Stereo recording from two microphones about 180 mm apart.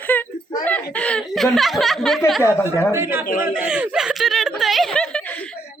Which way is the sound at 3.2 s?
50° left (ahead or behind).